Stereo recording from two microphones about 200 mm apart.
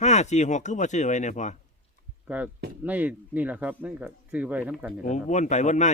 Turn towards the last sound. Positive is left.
turn(degrees=35)  # may be behind; listen again after turning